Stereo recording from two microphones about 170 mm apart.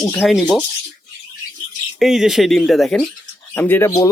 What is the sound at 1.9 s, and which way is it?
Speech, centre (ahead or behind).